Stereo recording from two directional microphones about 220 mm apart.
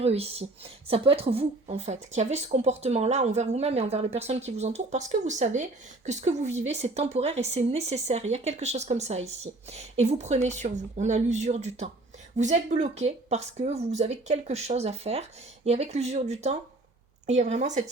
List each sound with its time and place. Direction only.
0.0 s a woman's voice: 25° right (ahead or behind)